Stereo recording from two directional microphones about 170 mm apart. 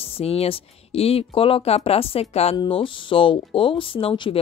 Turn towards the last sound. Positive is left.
turn(degrees=30)  # may be behind; listen again after turning